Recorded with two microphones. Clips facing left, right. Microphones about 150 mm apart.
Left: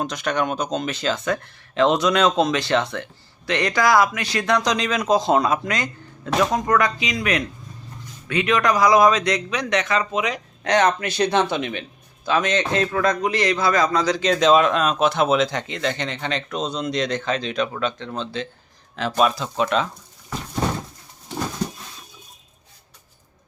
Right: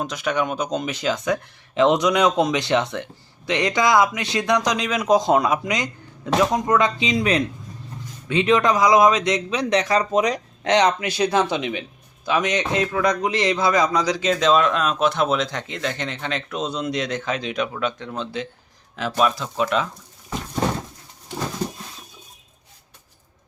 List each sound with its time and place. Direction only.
0.0 s speech: 5° right (ahead or behind); by 10.4 s 40° right (ahead or behind)
10.6 s speech: 20° right (ahead or behind)
14.3 s speech: centre (ahead or behind)